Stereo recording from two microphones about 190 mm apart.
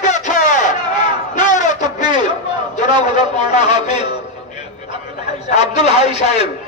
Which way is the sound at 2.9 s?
25° right (ahead or behind).